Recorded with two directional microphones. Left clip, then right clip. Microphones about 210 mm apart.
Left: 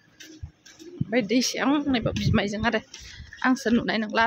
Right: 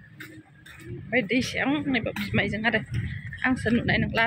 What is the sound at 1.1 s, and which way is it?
Speech, 15° left (ahead or behind).